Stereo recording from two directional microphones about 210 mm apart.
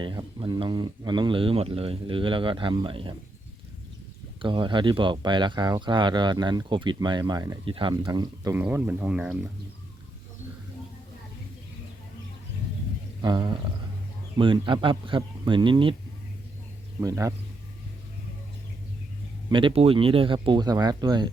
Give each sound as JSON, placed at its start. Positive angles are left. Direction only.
{"t": 0.0, "sound": "speech", "side_deg": -20}
{"t": 4.4, "sound": "speech", "side_deg": -20}
{"t": 13.2, "sound": "speech", "side_deg": -20}
{"t": 17.0, "sound": "speech", "side_deg": -15}
{"t": 19.5, "sound": "speech", "side_deg": -25}